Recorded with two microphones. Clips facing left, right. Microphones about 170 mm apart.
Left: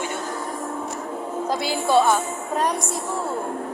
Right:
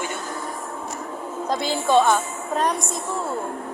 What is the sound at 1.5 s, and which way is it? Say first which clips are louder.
Speech: right 1 dB; 10° left (ahead or behind).